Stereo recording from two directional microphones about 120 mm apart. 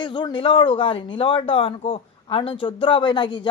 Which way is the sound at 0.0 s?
40° left (ahead or behind).